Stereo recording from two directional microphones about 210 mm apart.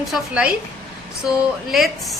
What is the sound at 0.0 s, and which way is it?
Speech, 5° right (ahead or behind).